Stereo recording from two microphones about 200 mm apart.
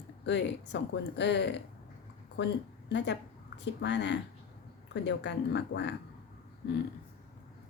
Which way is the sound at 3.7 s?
60° left (ahead or behind).